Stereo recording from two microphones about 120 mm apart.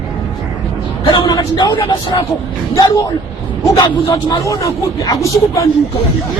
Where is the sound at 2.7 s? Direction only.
30° left (ahead or behind).